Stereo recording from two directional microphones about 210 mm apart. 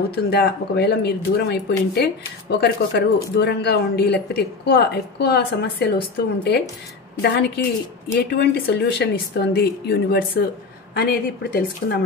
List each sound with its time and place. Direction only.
0.3 s speech: 50° left (ahead or behind)